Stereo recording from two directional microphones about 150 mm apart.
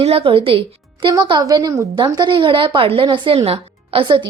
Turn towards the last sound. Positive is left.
turn(degrees=-35)  # may be behind; listen again after turning